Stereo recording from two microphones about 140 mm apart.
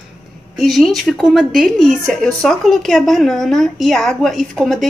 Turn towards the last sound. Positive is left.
turn(degrees=0)  # may be behind; listen again after turning